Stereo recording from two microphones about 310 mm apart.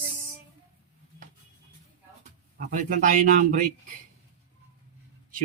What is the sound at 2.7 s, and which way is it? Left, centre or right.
Speech, right.